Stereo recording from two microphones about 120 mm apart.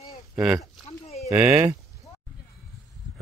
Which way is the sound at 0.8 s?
60° left (ahead or behind).